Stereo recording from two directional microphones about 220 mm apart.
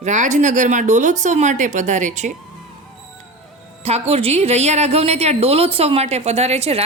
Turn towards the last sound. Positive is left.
turn(degrees=-25)  # may be behind; listen again after turning